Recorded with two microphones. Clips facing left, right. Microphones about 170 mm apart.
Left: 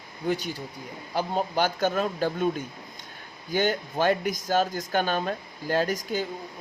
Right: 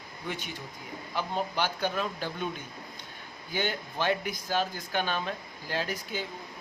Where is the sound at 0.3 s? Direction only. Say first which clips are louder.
Left 9 dB; 40° left (ahead or behind).